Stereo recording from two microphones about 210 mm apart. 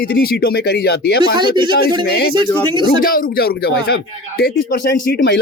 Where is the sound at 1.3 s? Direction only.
20° right (ahead or behind).